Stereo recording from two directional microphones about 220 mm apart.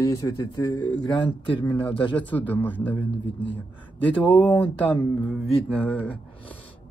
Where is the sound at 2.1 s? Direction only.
5° left (ahead or behind).